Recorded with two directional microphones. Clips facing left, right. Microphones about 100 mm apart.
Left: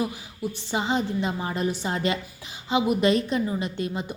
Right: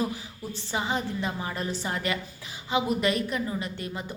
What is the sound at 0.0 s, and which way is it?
A woman's voice, 15° left (ahead or behind).